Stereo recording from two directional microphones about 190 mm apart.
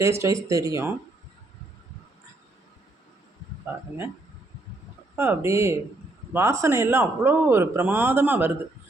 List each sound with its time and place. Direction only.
0.0 s a man's voice: 15° right (ahead or behind)
5.1 s a man's voice: 10° right (ahead or behind)